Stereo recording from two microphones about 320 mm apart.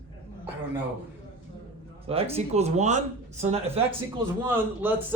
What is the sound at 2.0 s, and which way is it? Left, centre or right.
Speech, centre.